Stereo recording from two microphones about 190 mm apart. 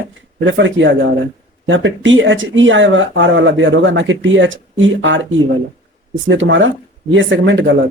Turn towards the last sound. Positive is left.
turn(degrees=-80)